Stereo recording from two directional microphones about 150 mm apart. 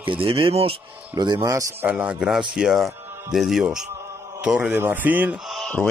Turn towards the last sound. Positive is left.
turn(degrees=5)  # may be behind; listen again after turning